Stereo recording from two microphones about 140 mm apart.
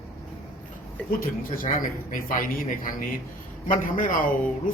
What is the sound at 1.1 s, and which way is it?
Speech, 90° left.